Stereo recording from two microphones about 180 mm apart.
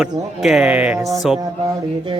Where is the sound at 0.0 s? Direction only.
Centre (ahead or behind).